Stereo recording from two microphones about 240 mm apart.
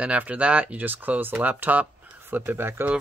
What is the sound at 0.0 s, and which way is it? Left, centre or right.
Speech, centre.